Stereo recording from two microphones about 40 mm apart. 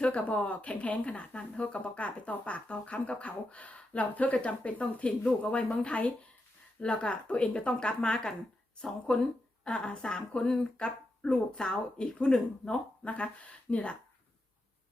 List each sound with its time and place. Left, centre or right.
0.0 s speech: left
13.1 s speech: left